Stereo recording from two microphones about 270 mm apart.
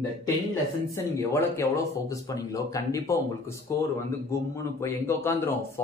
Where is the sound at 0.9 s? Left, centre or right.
Centre.